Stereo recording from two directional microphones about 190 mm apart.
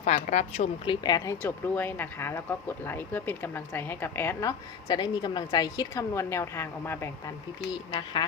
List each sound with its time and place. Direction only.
0.0 s a woman's voice: 40° left (ahead or behind)
1.0 s speech: 20° left (ahead or behind)
7.9 s a woman's voice: 25° left (ahead or behind)